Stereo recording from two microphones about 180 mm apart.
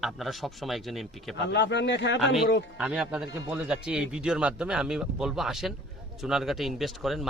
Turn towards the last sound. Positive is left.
turn(degrees=0)  # may be behind; listen again after turning